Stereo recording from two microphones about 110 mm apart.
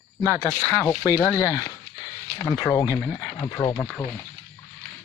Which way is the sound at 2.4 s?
40° left (ahead or behind).